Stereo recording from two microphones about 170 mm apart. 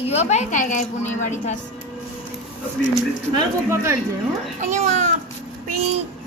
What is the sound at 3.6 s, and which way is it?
Speech, 15° right (ahead or behind).